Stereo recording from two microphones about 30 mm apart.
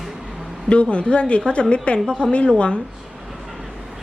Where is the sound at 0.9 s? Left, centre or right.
Left.